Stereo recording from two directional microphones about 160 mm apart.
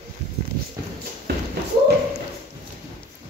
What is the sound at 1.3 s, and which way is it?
Thump, 90° right.